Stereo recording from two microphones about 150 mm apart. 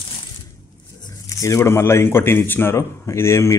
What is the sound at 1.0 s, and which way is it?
Speech, 25° left (ahead or behind).